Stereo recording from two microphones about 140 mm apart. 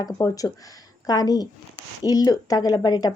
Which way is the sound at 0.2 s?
25° left (ahead or behind).